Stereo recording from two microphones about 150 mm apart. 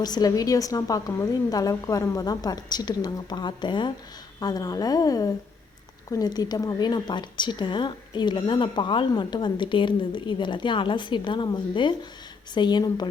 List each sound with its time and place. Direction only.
0.0 s a woman's voice: 25° left (ahead or behind)